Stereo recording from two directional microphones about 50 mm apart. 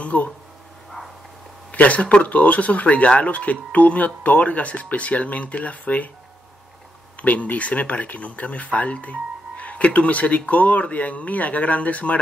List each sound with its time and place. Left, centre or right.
0.0 s a sound: left
1.7 s speech: left
7.2 s speech: left